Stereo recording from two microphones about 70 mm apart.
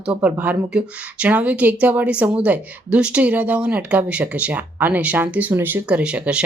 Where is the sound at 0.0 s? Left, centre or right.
Centre.